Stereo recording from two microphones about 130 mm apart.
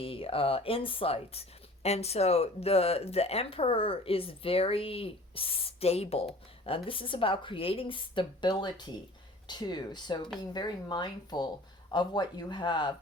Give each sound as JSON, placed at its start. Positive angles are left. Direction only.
{"t": 0.0, "sound": "a woman's voice", "side_deg": 45}